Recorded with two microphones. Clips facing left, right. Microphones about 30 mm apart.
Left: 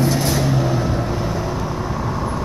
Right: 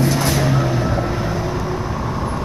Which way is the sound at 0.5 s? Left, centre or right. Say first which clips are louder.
Even; right.